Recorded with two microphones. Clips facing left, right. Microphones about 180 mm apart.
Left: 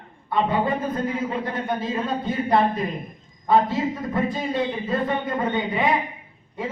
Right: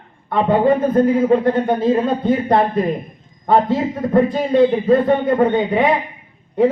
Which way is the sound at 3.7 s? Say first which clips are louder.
Right 8 dB; 55° right (ahead or behind).